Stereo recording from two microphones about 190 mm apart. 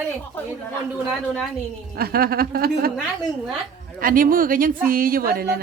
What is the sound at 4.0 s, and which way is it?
A woman's voice, 45° right (ahead or behind).